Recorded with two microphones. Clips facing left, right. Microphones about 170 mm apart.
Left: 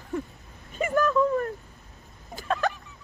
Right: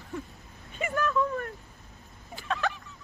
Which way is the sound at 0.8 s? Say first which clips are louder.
Left 5 dB; 40° left (ahead or behind).